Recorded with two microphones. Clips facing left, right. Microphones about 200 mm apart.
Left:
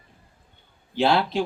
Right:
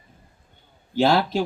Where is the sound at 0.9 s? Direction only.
45° right (ahead or behind).